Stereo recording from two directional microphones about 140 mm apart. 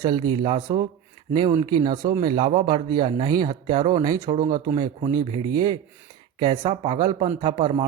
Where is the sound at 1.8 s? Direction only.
30° right (ahead or behind).